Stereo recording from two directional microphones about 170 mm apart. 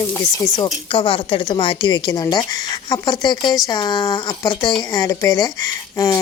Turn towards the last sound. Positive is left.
turn(degrees=20)  # may be behind; listen again after turning